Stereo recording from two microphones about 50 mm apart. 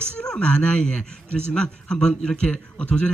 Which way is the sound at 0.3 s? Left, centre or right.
Left.